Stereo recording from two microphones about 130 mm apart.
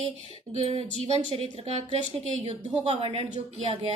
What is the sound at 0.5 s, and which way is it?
A woman's voice, 50° right (ahead or behind).